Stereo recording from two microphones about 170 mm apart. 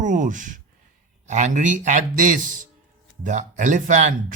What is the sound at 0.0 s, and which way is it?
Speech, 50° right (ahead or behind).